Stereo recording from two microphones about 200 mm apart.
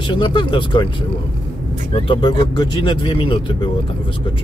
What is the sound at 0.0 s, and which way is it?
Speech, 25° left (ahead or behind).